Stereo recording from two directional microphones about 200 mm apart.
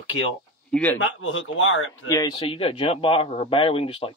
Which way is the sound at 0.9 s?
70° left (ahead or behind).